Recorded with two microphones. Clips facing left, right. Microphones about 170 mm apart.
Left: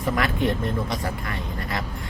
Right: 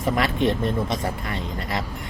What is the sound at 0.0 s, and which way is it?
Speech, 20° right (ahead or behind).